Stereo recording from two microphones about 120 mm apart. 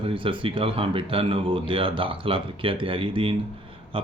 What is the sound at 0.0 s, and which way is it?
Speech, 45° right (ahead or behind).